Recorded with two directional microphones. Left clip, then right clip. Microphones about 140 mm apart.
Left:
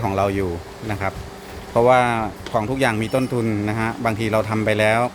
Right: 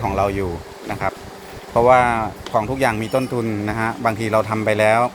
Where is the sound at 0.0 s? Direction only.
30° left (ahead or behind).